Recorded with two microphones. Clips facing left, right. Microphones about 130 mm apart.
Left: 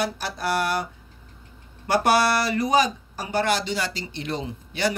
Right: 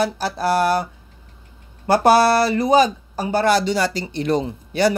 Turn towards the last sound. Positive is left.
turn(degrees=-40)  # may be behind; listen again after turning